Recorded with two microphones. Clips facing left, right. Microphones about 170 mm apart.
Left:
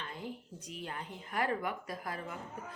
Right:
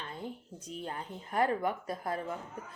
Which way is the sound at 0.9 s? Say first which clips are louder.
Right 3 dB; 35° right (ahead or behind).